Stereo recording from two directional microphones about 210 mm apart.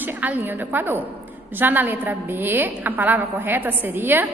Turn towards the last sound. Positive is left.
turn(degrees=-10)  # may be behind; listen again after turning